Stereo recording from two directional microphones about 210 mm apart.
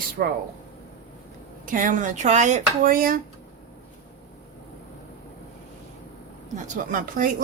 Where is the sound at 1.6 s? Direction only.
40° right (ahead or behind).